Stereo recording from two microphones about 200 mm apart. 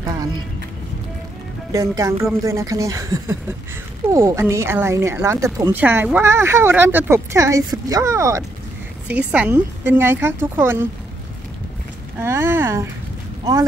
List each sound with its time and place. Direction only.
1.7 s speech: 15° right (ahead or behind)
12.2 s speech: 15° right (ahead or behind)